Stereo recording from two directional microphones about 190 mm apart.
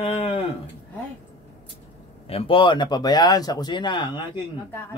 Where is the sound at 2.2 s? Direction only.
30° left (ahead or behind).